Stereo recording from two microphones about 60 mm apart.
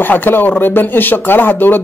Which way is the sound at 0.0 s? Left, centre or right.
Left.